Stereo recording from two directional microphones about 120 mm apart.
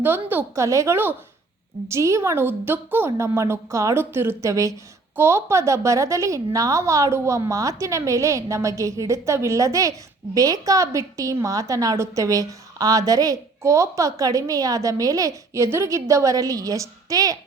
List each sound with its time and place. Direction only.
0.0 s a woman's voice: 15° right (ahead or behind)